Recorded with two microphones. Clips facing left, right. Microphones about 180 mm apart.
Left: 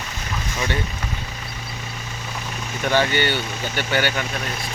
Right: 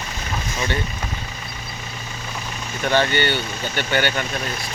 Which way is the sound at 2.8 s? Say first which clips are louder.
Right 1 dB; 10° left (ahead or behind).